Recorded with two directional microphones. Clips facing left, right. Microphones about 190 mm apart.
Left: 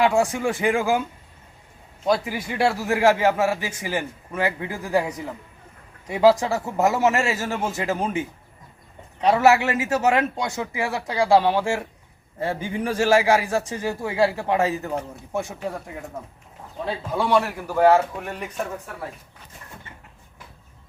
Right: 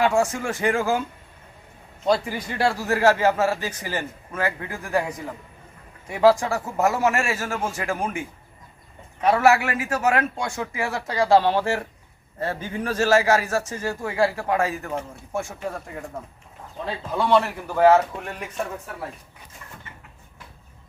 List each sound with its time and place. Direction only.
0.0 s speech: 15° left (ahead or behind)
2.0 s speech: 5° left (ahead or behind)
16.8 s a man's voice: 10° left (ahead or behind)